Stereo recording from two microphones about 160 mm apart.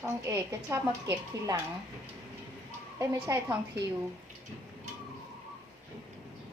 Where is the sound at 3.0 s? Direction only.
20° right (ahead or behind).